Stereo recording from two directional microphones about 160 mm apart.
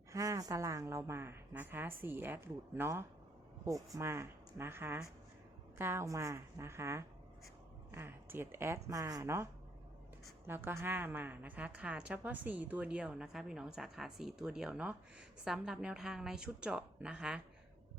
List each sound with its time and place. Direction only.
0.1 s a woman's voice: 20° right (ahead or behind); by 17.4 s 5° right (ahead or behind)